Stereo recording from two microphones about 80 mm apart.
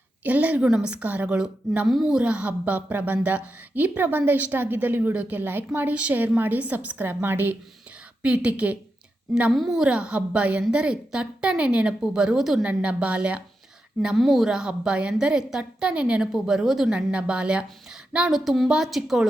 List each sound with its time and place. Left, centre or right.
0.3 s a woman's voice: centre
8.2 s a woman's voice: centre
9.5 s a woman's voice: centre
12.6 s a woman's voice: centre
14.2 s a woman's voice: centre
18.3 s a woman's voice: centre